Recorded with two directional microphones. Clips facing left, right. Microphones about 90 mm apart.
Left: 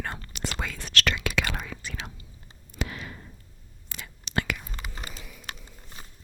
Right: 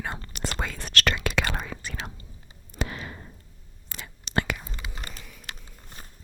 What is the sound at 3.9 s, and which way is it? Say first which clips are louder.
Whispering: right 1 dB; 35° right (ahead or behind).